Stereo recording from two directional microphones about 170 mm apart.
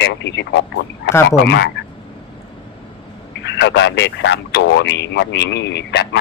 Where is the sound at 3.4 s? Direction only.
90° left.